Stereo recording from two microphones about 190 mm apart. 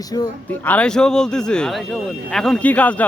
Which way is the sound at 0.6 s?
5° left (ahead or behind).